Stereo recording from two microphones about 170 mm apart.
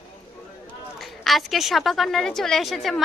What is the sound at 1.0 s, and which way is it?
A woman's voice, centre (ahead or behind).